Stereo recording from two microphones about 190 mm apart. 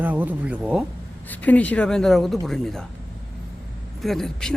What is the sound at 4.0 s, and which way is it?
Speech, centre (ahead or behind).